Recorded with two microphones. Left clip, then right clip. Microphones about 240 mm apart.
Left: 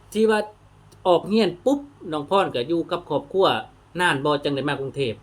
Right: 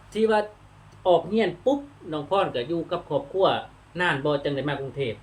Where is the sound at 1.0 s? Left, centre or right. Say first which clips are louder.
Left 2 dB; left.